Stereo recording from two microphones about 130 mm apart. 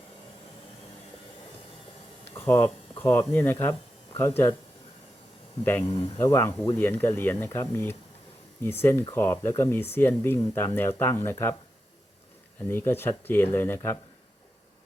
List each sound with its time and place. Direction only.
2.3 s speech: 20° left (ahead or behind)
5.6 s speech: 20° left (ahead or behind)
12.5 s speech: 20° left (ahead or behind)